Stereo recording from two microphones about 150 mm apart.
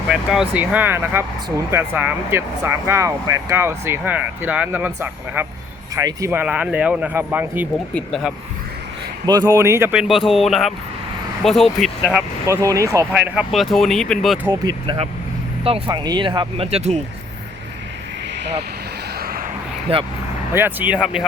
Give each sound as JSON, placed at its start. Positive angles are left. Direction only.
{"t": 0.1, "sound": "speech", "side_deg": -5}
{"t": 6.4, "sound": "speech", "side_deg": -10}
{"t": 7.9, "sound": "speech", "side_deg": 0}
{"t": 9.2, "sound": "speech", "side_deg": -25}
{"t": 9.9, "sound": "speech", "side_deg": -5}
{"t": 12.5, "sound": "speech", "side_deg": -20}
{"t": 13.1, "sound": "speech", "side_deg": -5}
{"t": 14.6, "sound": "speech", "side_deg": -25}
{"t": 16.7, "sound": "speech", "side_deg": -45}
{"t": 19.9, "sound": "speech", "side_deg": -40}
{"t": 20.5, "sound": "speech", "side_deg": -15}